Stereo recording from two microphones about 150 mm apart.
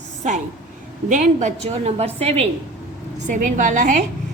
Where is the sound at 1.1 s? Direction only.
55° right (ahead or behind).